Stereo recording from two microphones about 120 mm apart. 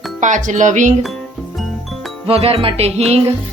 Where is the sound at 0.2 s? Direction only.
90° right.